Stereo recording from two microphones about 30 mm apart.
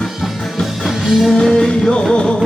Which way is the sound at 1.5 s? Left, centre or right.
Left.